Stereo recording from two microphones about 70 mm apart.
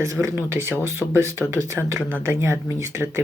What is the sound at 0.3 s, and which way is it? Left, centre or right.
Speech, right.